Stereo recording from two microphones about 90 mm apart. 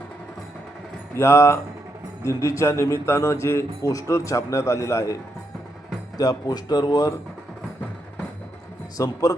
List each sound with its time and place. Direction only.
1.1 s a man's voice: 30° left (ahead or behind); by 7.1 s 45° left (ahead or behind)
9.0 s a man's voice: 40° left (ahead or behind)